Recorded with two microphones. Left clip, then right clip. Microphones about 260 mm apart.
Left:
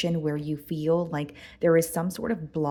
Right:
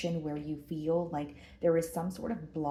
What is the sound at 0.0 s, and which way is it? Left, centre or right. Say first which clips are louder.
Speech: left 7 dB; left.